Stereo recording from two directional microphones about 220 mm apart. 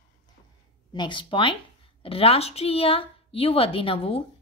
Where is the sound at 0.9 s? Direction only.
20° left (ahead or behind).